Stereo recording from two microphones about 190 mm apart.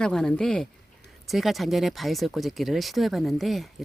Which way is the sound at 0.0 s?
5° left (ahead or behind).